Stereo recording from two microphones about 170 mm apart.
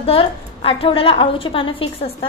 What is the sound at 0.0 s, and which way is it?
A woman's voice, 35° left (ahead or behind).